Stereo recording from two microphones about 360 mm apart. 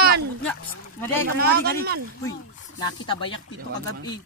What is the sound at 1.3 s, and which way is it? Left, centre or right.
Speech, right.